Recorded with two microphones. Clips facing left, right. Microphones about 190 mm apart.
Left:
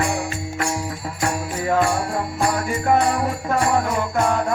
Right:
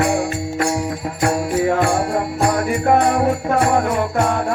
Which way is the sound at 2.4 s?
60° right (ahead or behind).